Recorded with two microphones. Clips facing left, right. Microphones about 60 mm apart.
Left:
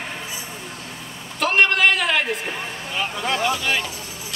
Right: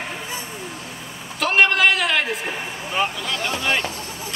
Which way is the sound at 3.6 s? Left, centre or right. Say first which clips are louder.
Right 1 dB; centre.